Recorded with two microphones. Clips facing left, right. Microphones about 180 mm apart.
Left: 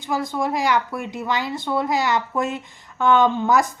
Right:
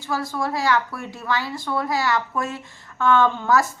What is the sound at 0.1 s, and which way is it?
A woman's voice, 20° left (ahead or behind).